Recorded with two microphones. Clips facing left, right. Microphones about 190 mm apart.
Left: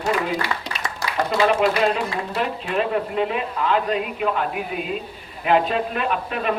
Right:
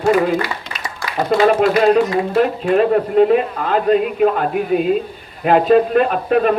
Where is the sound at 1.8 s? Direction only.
45° right (ahead or behind).